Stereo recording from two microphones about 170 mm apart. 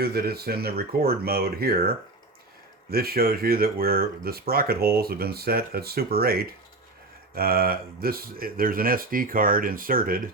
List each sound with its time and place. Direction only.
0.0 s speech: 65° right (ahead or behind)
2.9 s speech: 65° right (ahead or behind)